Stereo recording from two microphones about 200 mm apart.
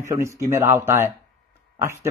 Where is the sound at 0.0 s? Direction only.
15° right (ahead or behind).